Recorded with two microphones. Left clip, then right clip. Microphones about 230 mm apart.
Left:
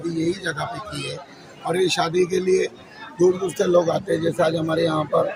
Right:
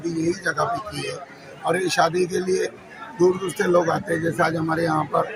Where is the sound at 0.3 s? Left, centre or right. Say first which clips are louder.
Right 1 dB; centre.